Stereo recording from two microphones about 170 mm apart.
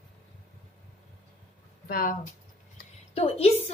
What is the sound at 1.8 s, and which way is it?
Speech, 60° left (ahead or behind).